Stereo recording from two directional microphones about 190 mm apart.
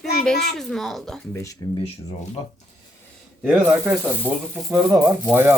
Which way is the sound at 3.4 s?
5° right (ahead or behind).